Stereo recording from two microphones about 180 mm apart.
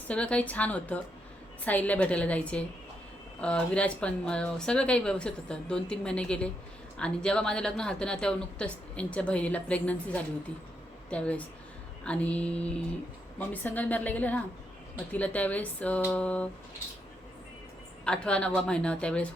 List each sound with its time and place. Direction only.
0.1 s speech: 5° left (ahead or behind)
18.0 s speech: 5° left (ahead or behind)